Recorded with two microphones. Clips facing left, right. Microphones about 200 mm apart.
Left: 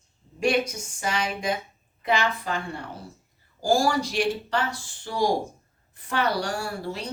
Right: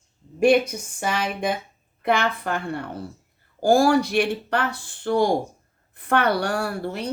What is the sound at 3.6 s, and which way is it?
Speech, 60° right (ahead or behind).